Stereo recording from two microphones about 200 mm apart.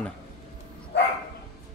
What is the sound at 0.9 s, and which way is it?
Dog, 60° left (ahead or behind).